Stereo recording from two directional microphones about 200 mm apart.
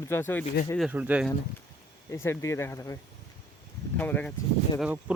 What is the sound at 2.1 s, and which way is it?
Speech, 15° left (ahead or behind).